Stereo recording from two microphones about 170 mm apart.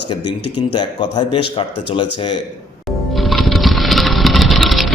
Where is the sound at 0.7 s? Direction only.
25° left (ahead or behind).